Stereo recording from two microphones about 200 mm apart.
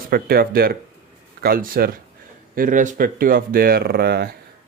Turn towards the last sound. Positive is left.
turn(degrees=-50)  # may be behind; listen again after turning